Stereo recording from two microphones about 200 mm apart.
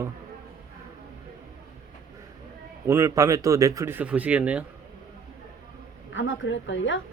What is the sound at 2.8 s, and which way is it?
Speech, 15° right (ahead or behind).